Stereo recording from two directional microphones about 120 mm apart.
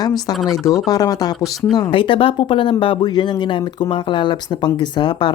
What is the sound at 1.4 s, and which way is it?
Speech, centre (ahead or behind).